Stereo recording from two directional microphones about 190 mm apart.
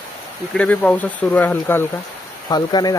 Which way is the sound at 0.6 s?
5° left (ahead or behind).